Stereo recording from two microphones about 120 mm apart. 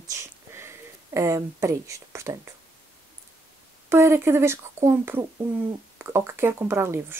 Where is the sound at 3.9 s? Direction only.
20° right (ahead or behind).